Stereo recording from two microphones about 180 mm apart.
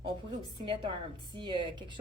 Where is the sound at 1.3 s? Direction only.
25° right (ahead or behind).